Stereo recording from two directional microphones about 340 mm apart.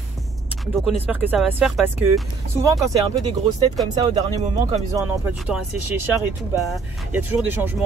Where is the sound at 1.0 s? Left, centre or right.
Centre.